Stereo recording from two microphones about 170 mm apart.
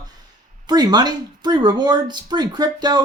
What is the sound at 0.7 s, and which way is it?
Speech, 25° right (ahead or behind).